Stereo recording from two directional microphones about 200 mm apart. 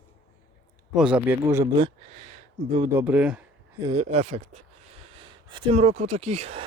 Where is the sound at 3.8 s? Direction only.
25° right (ahead or behind).